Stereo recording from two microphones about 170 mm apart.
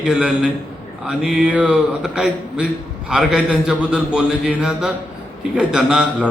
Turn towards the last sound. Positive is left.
turn(degrees=-5)  # may be behind; listen again after turning